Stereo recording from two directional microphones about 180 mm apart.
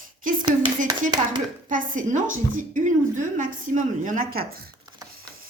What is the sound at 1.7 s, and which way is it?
A woman's voice, 45° right (ahead or behind).